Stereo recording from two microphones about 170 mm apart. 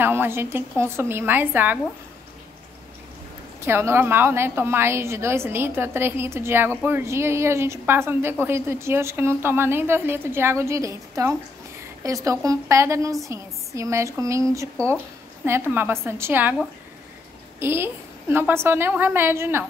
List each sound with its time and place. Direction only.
0.0 s a woman's voice: 10° right (ahead or behind)
3.6 s a woman's voice: 15° right (ahead or behind)
17.6 s a woman's voice: 15° right (ahead or behind)